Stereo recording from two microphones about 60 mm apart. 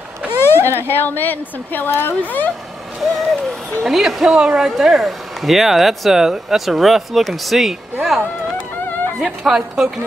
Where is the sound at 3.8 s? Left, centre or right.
Centre.